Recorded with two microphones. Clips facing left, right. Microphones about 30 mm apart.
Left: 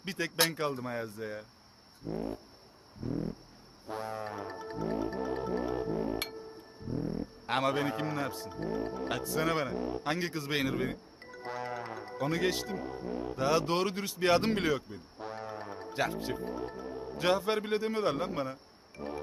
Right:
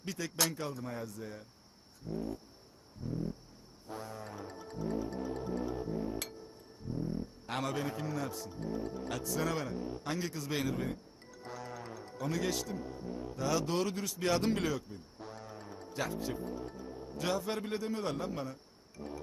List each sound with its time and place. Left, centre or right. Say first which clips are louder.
0.0 s speech: left 4 dB; left
2.0 s vehicle: left 3 dB; left
3.0 s a sound: left 3 dB; left
3.8 s music: left 6 dB; left
6.8 s speech: left 3 dB; left